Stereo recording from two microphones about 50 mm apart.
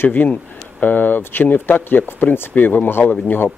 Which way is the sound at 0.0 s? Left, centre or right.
Left.